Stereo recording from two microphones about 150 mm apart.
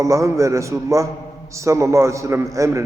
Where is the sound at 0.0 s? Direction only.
20° right (ahead or behind).